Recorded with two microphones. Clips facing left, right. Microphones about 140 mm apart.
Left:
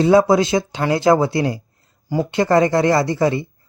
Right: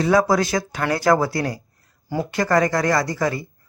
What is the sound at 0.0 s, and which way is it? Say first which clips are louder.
Speech: left 4 dB; 25° left (ahead or behind).